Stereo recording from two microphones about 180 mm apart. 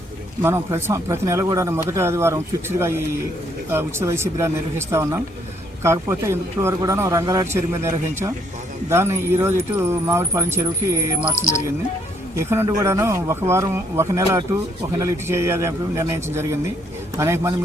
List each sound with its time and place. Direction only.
0.4 s a man's voice: 15° right (ahead or behind)
12.4 s a man's voice: 15° right (ahead or behind)